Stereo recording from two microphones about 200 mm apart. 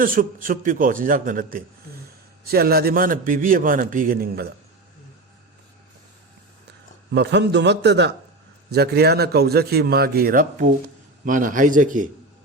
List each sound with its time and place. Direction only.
0.0 s a man's voice: 45° right (ahead or behind)
7.1 s a man's voice: 60° right (ahead or behind); by 12.0 s 40° right (ahead or behind)